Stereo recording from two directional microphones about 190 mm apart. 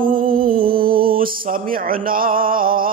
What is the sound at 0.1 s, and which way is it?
Music, 45° right (ahead or behind).